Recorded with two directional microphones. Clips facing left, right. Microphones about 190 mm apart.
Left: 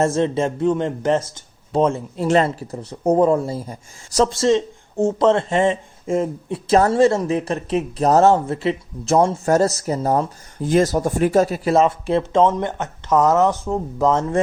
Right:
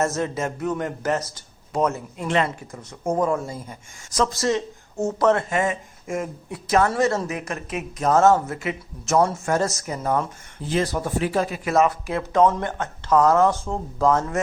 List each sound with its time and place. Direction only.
0.0 s speech: 30° left (ahead or behind)
10.6 s speech: 45° left (ahead or behind); by 14.3 s 25° left (ahead or behind)